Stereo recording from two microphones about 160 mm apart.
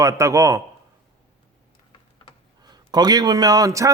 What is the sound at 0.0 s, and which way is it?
Speech, 20° right (ahead or behind).